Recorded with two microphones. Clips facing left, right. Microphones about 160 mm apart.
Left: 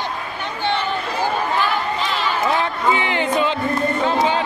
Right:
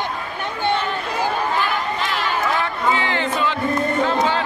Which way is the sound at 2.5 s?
15° left (ahead or behind).